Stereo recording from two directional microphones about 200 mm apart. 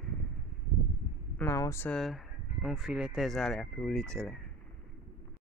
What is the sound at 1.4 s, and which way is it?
Speech, 15° left (ahead or behind).